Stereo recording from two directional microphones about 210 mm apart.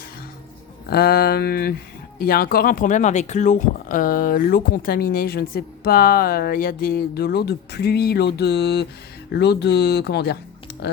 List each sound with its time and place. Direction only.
0.9 s speech: 45° left (ahead or behind)